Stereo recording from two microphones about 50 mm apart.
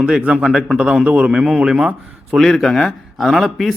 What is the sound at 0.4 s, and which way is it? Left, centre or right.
Speech, centre.